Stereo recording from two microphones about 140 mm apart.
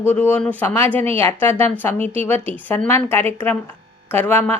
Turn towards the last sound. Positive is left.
turn(degrees=15)  # may be behind; listen again after turning